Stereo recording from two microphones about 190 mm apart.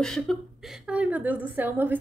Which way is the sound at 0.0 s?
Centre (ahead or behind).